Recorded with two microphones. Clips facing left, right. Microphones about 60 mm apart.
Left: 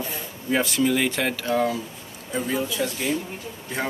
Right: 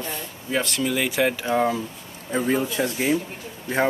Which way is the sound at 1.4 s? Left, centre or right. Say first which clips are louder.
Right 1 dB; right.